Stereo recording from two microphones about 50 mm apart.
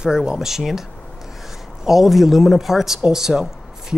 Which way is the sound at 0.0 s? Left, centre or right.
Centre.